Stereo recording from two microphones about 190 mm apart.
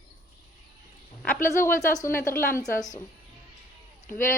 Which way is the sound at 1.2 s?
10° left (ahead or behind).